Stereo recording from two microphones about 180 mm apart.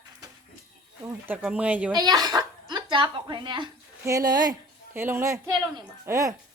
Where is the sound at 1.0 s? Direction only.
10° right (ahead or behind).